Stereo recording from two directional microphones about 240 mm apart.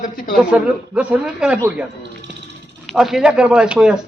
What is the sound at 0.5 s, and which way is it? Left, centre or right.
A man's voice, centre.